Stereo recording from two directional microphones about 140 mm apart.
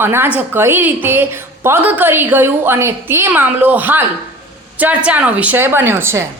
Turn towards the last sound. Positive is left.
turn(degrees=-20)  # may be behind; listen again after turning